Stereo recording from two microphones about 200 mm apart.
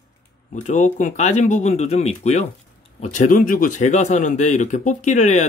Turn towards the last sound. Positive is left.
turn(degrees=35)  # may be behind; listen again after turning